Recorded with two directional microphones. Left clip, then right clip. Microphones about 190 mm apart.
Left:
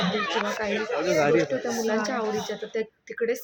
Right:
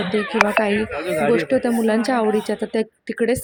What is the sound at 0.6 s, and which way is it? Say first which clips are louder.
Speech: right 5 dB; 45° right (ahead or behind).